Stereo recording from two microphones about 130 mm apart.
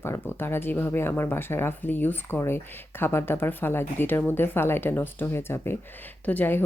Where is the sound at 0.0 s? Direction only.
20° left (ahead or behind).